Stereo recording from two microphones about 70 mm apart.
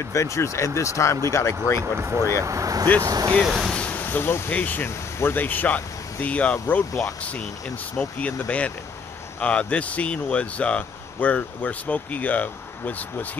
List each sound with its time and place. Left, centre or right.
0.1 s speech: left
2.4 s speech: right
3.4 s speech: centre
3.7 s a sound: centre
4.0 s speech: left
8.0 s speech: centre